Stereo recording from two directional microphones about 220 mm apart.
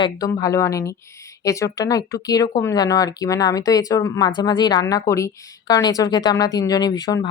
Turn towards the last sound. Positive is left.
turn(degrees=15)  # may be behind; listen again after turning